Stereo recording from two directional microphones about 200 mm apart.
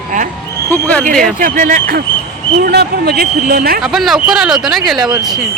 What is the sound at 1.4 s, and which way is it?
Speech, 40° right (ahead or behind).